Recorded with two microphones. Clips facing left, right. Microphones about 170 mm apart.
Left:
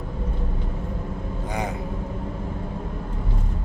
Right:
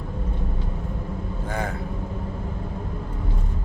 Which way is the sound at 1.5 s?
15° left (ahead or behind).